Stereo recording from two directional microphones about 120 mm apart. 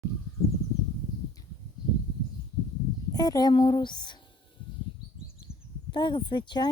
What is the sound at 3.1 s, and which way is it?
Speech, 30° left (ahead or behind).